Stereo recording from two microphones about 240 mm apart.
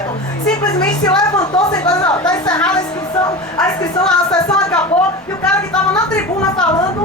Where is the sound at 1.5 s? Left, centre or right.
Centre.